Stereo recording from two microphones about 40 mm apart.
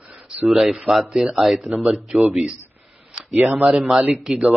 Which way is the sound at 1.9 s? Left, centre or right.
Right.